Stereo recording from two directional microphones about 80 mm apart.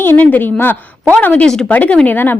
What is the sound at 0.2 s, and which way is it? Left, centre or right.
Speech, left.